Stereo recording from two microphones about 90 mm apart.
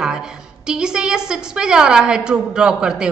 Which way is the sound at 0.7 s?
10° right (ahead or behind).